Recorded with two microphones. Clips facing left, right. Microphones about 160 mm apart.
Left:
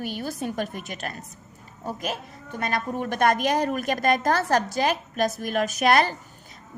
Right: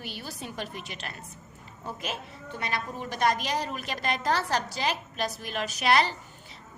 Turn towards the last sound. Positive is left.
turn(degrees=50)  # may be behind; listen again after turning